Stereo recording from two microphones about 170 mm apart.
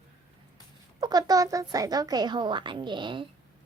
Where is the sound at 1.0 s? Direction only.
25° right (ahead or behind).